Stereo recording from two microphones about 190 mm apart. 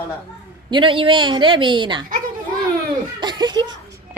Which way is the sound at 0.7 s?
25° right (ahead or behind).